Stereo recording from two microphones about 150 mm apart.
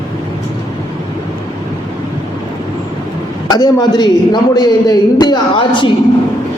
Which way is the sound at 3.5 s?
25° left (ahead or behind).